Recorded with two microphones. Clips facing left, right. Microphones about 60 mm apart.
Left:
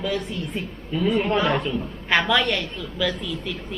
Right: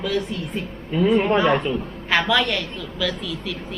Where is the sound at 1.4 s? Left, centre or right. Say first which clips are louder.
Right 3 dB; centre.